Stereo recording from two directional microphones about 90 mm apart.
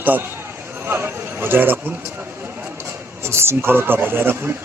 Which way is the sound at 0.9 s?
25° right (ahead or behind).